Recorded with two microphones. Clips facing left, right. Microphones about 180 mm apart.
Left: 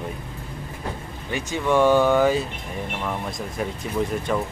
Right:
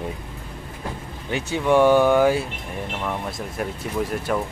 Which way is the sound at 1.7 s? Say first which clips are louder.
Right 2 dB; 15° right (ahead or behind).